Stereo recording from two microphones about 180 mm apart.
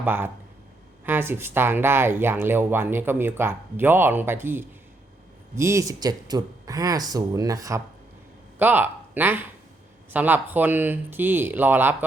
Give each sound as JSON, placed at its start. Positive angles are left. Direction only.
{"t": 0.0, "sound": "speech", "side_deg": -10}